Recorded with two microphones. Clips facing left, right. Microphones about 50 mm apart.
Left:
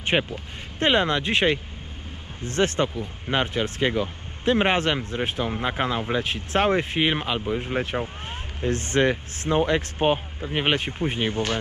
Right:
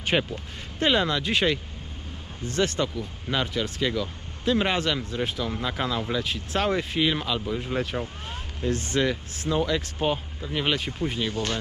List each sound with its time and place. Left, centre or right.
0.0 s speech: centre
0.8 s speech: left
2.6 s speech: left